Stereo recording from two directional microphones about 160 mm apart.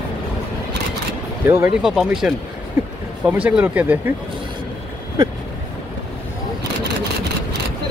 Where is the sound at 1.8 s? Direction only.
5° right (ahead or behind).